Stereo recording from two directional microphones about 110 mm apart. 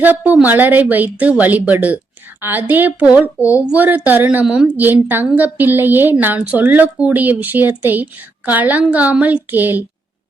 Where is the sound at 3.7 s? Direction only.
15° right (ahead or behind).